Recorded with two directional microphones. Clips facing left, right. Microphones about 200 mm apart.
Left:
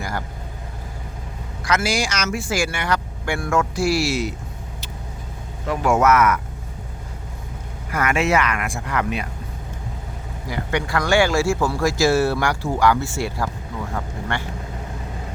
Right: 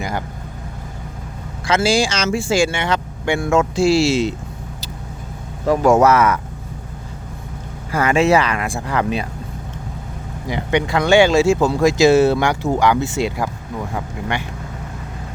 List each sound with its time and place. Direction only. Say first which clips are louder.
1.6 s speech: right 5 dB; 30° right (ahead or behind)
5.6 s speech: right 5 dB; 40° right (ahead or behind)
7.9 s speech: right 5 dB; 30° right (ahead or behind)
10.5 s speech: right 5 dB; 20° right (ahead or behind)